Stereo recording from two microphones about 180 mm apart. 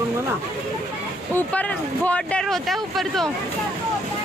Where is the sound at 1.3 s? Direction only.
10° left (ahead or behind).